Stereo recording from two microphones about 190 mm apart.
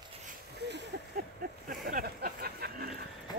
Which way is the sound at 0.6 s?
60° right (ahead or behind).